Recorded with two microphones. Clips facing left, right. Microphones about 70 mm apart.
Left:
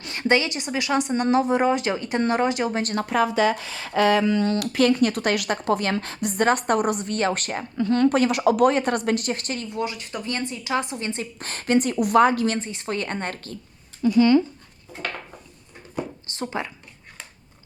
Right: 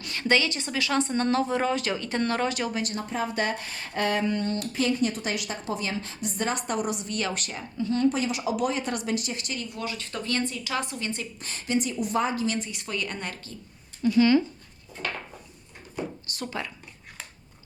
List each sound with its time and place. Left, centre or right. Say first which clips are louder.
0.0 s a woman's voice: left 3 dB; left
2.9 s speech: left 8 dB; left
9.6 s a woman's voice: left 6 dB; left
11.3 s a woman's voice: left 7 dB; left
12.5 s a woman's voice: left 4 dB; left
16.2 s a woman's voice: left 4 dB; left